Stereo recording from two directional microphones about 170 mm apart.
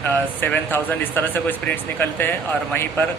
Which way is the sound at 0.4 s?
10° left (ahead or behind).